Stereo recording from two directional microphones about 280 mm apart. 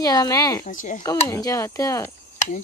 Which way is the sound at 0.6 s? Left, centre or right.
Left.